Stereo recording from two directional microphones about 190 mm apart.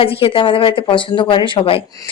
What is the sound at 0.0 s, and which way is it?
A woman's voice, 30° left (ahead or behind).